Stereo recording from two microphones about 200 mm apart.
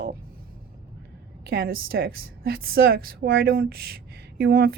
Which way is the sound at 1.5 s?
50° right (ahead or behind).